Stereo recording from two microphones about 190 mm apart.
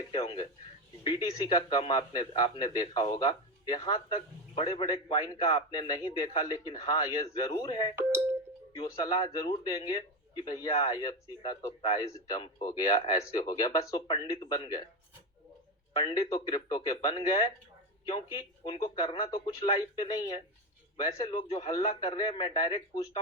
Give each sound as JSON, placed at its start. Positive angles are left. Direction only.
{"t": 0.1, "sound": "a sound", "side_deg": 25}
{"t": 1.0, "sound": "speech", "side_deg": 25}
{"t": 7.9, "sound": "speech", "side_deg": -15}
{"t": 8.7, "sound": "speech", "side_deg": 25}
{"t": 15.9, "sound": "speech", "side_deg": 20}